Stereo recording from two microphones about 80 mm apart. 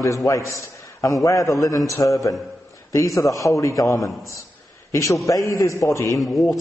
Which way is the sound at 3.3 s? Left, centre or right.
Left.